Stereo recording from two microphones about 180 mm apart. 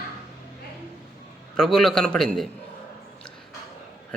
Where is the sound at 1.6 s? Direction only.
5° left (ahead or behind).